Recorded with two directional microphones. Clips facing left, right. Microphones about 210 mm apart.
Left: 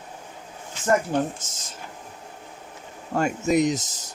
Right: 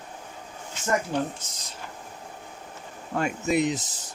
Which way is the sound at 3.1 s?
45° left (ahead or behind).